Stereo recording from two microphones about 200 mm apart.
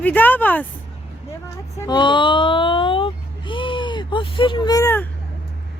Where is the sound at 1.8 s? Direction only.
20° left (ahead or behind).